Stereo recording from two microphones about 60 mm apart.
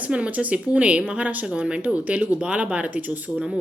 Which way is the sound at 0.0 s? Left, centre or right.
Right.